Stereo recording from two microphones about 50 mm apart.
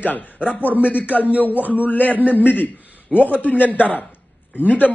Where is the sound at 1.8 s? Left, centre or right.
Left.